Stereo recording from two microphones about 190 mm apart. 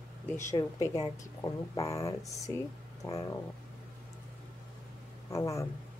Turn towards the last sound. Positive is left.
turn(degrees=15)  # may be behind; listen again after turning